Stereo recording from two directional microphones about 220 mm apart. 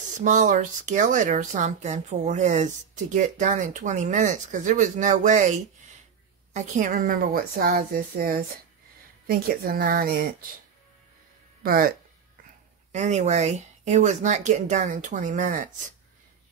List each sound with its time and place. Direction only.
0.2 s speech: 35° right (ahead or behind)
11.6 s speech: 40° right (ahead or behind)
12.9 s speech: 30° right (ahead or behind)